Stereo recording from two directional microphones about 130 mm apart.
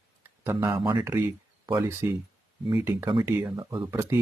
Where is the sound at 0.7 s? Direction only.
35° right (ahead or behind).